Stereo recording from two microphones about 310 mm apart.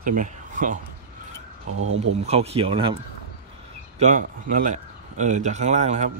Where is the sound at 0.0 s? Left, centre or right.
Right.